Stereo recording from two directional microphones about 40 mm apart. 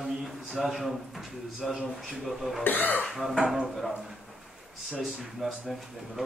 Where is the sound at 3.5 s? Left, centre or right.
Centre.